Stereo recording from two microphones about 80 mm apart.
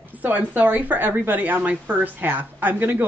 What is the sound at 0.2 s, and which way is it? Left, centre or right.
Speech, right.